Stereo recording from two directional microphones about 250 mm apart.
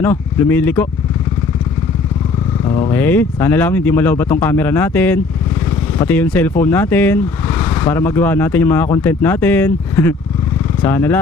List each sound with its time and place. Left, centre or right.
0.0 s speech: centre
2.6 s speech: centre
2.9 s speech: centre